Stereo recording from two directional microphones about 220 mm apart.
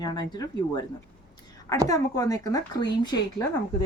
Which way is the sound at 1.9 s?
15° left (ahead or behind).